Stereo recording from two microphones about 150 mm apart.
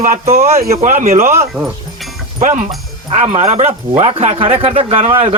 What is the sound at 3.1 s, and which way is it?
Speech, 50° right (ahead or behind).